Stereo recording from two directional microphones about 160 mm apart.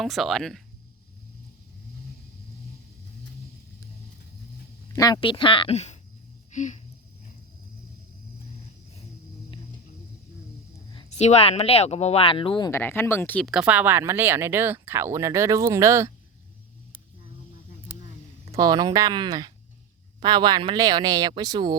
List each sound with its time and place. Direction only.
0.0 s speech: centre (ahead or behind)
4.9 s speech: 25° left (ahead or behind); by 6.0 s 45° left (ahead or behind)
6.5 s a sound: 50° left (ahead or behind)
11.1 s speech: 45° left (ahead or behind); by 12.8 s 25° left (ahead or behind)
12.8 s speech: 10° left (ahead or behind)
13.5 s speech: 5° right (ahead or behind)
18.5 s speech: 25° right (ahead or behind)